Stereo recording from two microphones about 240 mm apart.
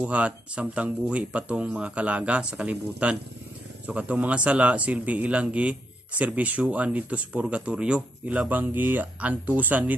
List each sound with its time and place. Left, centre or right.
0.0 s speech: centre